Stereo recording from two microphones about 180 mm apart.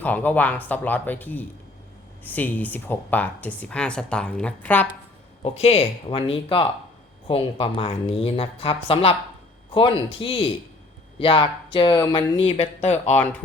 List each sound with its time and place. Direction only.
0.0 s speech: 10° left (ahead or behind)
5.4 s speech: 35° left (ahead or behind)